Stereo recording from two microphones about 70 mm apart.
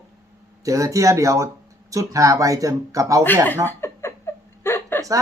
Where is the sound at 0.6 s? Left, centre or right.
Right.